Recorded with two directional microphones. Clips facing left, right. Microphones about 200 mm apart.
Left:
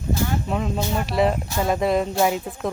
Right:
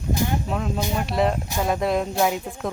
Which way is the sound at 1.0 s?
Centre (ahead or behind).